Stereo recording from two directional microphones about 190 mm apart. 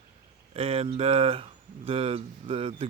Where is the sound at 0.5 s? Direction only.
30° right (ahead or behind).